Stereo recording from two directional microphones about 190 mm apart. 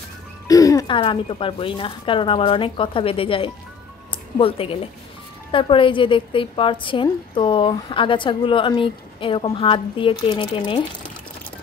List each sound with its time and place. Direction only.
0.5 s a woman's voice: 20° left (ahead or behind)